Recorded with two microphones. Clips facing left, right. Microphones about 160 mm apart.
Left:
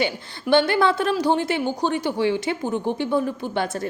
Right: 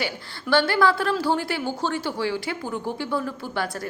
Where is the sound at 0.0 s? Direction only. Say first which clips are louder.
Left 5 dB; 20° left (ahead or behind).